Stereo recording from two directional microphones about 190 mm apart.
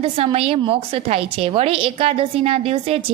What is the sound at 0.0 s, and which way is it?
A woman's voice, 30° right (ahead or behind).